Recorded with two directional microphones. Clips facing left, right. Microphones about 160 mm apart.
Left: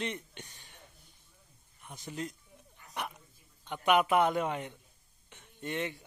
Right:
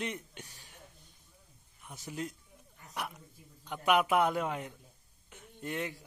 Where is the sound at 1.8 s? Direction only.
5° right (ahead or behind).